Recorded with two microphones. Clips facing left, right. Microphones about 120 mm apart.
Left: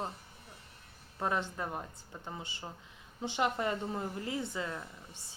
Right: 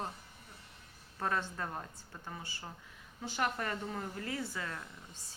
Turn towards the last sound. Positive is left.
turn(degrees=15)  # may be behind; listen again after turning